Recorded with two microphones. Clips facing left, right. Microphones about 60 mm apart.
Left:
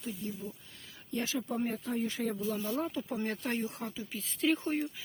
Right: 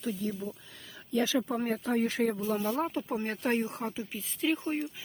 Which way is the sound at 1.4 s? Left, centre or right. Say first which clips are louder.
Right 4 dB; right.